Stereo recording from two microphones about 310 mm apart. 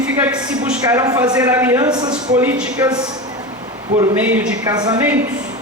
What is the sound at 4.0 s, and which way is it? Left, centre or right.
A man's voice, centre.